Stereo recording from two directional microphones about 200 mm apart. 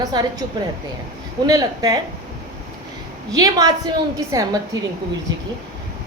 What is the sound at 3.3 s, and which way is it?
A woman's voice, 20° right (ahead or behind).